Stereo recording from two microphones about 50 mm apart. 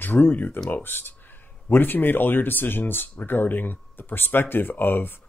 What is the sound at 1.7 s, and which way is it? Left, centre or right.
Speech, left.